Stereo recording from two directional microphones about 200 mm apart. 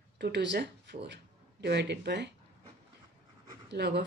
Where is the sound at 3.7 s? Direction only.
55° right (ahead or behind).